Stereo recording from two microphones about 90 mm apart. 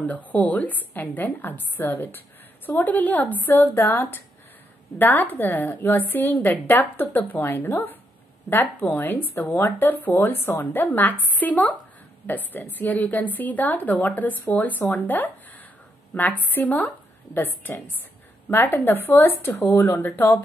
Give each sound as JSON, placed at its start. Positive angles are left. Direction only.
{"t": 0.0, "sound": "a woman's voice", "side_deg": 15}